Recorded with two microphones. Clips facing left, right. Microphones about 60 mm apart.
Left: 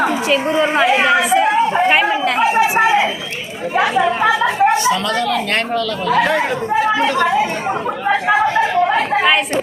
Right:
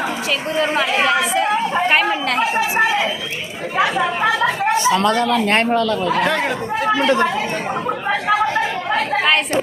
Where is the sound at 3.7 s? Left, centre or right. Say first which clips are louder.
Left 3 dB; centre.